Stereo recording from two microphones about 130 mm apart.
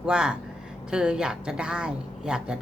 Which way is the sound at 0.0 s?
5° right (ahead or behind).